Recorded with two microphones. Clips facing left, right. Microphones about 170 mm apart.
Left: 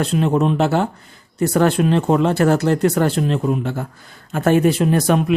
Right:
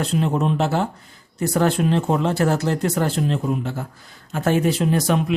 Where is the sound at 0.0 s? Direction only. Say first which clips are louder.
Left 4 dB; 70° left (ahead or behind).